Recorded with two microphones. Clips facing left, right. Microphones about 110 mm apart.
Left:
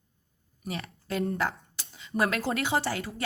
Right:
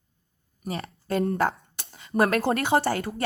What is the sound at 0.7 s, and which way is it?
Speech, 45° right (ahead or behind).